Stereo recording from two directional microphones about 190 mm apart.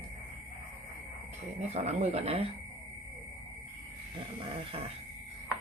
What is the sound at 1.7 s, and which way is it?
Speech, 35° right (ahead or behind).